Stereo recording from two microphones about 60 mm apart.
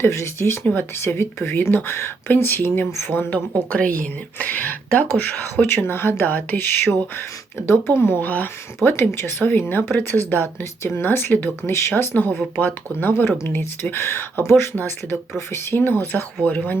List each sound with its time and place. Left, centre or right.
0.1 s speech: left
0.6 s speech: left
5.6 s speech: left
12.5 s speech: left
16.1 s speech: left